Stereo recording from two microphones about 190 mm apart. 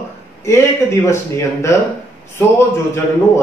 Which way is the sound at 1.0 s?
15° left (ahead or behind).